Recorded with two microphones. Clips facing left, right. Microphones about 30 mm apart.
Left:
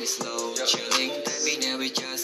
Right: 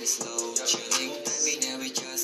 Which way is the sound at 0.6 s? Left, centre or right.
Left.